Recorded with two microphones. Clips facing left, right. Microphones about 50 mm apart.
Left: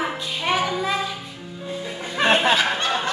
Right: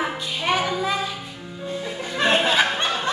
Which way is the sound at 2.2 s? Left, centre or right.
Centre.